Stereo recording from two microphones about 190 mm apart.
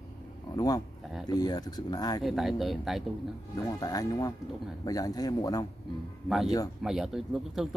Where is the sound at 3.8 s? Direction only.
20° left (ahead or behind).